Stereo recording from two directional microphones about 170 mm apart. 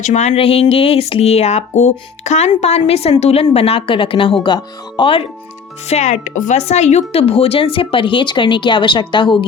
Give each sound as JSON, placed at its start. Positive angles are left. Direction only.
{"t": 0.0, "sound": "speech", "side_deg": 45}
{"t": 5.9, "sound": "speech", "side_deg": 40}